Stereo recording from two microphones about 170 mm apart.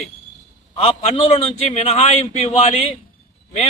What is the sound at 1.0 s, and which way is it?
A man's voice, 40° left (ahead or behind).